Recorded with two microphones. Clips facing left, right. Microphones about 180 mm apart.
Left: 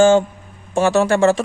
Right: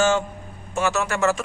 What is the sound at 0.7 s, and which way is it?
Speech, 30° left (ahead or behind).